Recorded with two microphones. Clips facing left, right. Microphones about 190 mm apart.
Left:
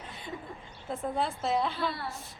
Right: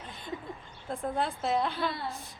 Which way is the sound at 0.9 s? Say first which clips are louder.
Even; centre (ahead or behind).